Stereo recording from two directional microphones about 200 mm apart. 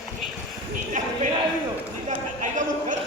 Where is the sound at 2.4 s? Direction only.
40° right (ahead or behind).